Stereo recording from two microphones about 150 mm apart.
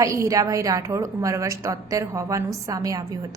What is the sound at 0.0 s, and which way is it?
A woman's voice, 20° right (ahead or behind).